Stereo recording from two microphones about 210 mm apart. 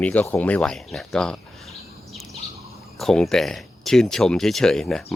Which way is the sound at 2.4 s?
30° left (ahead or behind).